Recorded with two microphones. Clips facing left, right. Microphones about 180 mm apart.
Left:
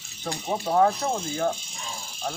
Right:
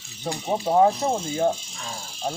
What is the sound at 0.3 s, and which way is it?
Speech, 15° right (ahead or behind).